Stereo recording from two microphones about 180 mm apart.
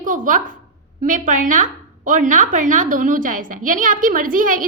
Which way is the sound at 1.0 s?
45° right (ahead or behind).